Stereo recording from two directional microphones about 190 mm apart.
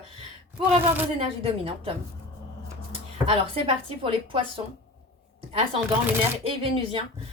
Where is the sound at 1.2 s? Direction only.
30° right (ahead or behind).